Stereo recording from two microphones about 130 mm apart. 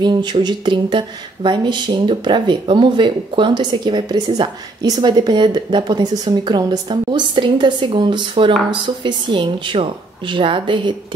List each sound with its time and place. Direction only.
0.0 s speech: 35° right (ahead or behind)